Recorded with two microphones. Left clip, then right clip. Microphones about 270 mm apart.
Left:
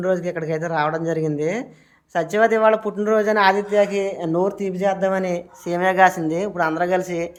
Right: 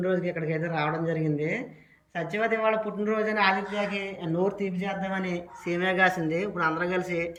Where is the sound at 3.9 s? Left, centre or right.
Left.